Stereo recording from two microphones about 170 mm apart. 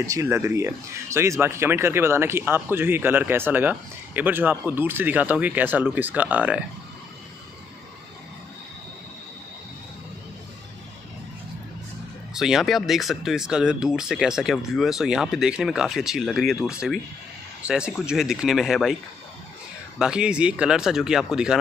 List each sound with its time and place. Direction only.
0.0 s speech: 20° right (ahead or behind)
12.4 s speech: centre (ahead or behind)
20.0 s speech: 5° right (ahead or behind)